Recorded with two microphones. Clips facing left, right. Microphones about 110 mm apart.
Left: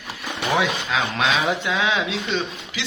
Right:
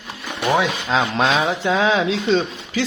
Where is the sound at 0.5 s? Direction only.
20° right (ahead or behind).